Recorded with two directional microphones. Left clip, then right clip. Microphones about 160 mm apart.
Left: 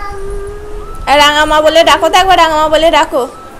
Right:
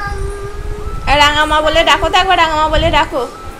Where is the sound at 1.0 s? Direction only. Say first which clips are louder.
Left 3 dB; 20° left (ahead or behind).